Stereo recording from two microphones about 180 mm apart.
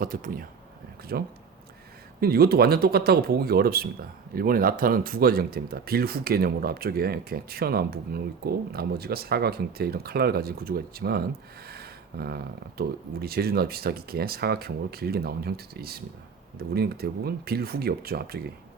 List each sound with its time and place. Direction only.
0.0 s speech: 50° right (ahead or behind)